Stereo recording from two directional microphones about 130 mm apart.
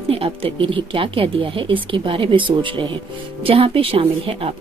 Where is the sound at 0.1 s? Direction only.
45° right (ahead or behind).